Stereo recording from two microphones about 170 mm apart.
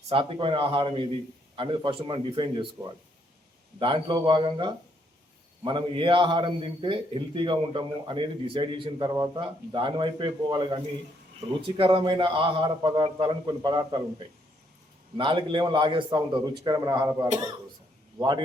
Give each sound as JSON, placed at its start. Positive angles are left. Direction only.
{"t": 0.1, "sound": "a man's voice", "side_deg": -30}
{"t": 15.2, "sound": "a man's voice", "side_deg": -30}